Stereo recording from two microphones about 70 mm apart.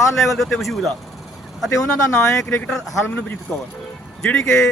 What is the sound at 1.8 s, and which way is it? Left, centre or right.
Speech, centre.